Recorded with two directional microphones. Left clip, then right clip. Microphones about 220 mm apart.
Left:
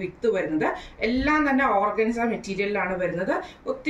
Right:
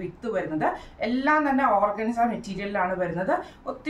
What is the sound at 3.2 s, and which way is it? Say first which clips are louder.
Speech: even; 20° right (ahead or behind).